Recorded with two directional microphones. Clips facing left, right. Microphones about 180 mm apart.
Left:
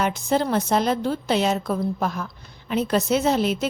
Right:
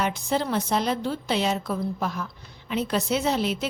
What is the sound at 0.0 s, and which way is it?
A woman's voice, 45° left (ahead or behind).